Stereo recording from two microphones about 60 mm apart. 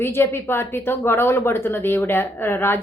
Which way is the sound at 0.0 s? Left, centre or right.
Left.